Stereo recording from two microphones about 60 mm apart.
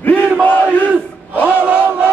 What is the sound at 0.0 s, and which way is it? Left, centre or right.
Battle cry, left.